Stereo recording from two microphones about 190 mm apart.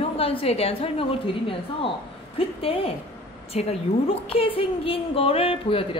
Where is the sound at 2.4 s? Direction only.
30° left (ahead or behind).